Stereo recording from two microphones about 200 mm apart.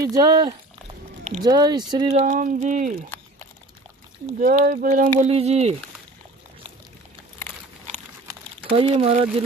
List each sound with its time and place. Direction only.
0.0 s speech: 20° right (ahead or behind)
2.1 s speech: 40° right (ahead or behind)
4.4 s speech: 45° right (ahead or behind)
8.3 s a sound: 25° right (ahead or behind)